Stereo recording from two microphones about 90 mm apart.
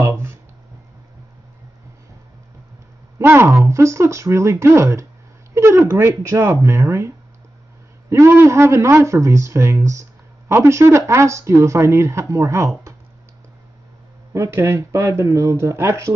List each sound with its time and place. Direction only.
0.0 s a sound: 25° right (ahead or behind)
3.2 s speech: 30° right (ahead or behind)
8.1 s speech: 30° right (ahead or behind)
14.3 s speech: 30° right (ahead or behind)